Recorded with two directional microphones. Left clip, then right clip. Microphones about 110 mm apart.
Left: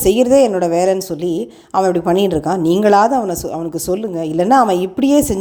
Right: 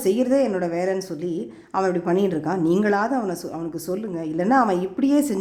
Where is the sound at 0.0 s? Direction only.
40° left (ahead or behind).